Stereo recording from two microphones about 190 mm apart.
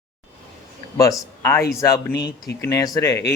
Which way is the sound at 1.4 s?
15° left (ahead or behind).